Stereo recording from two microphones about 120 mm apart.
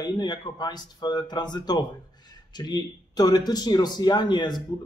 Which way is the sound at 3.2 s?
35° left (ahead or behind).